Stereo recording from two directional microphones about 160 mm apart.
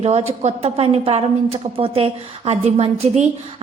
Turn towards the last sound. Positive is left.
turn(degrees=-45)  # may be behind; listen again after turning